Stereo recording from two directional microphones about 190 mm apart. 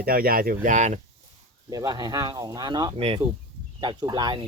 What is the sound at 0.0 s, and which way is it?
Speech, 50° right (ahead or behind).